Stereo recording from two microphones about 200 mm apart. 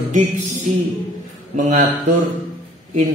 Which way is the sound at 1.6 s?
40° right (ahead or behind).